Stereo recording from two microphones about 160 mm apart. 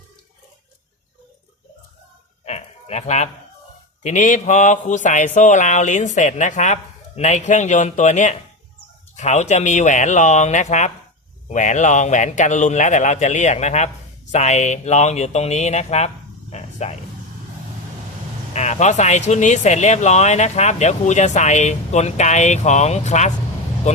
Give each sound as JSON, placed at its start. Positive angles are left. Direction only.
{"t": 2.4, "sound": "a sound", "side_deg": 40}
{"t": 4.0, "sound": "speech", "side_deg": 50}
{"t": 18.5, "sound": "speech", "side_deg": 45}